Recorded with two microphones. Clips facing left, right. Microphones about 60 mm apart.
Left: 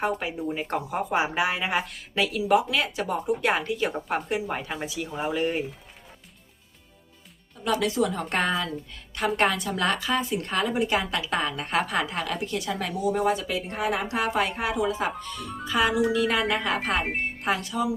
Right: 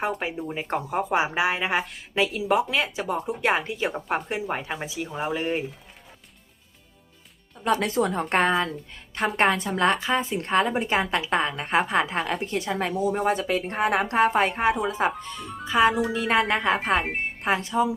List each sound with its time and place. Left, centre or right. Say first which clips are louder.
0.3 s speech: even; centre; by 2.9 s right
2.9 s speech: left 1 dB; centre
7.6 s a woman's voice: right 1 dB; right
16.4 s speech: right 3 dB; centre
17.4 s a woman's voice: right 5 dB; right